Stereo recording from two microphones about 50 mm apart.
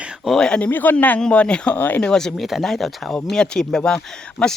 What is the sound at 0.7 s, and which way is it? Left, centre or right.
Speech, left.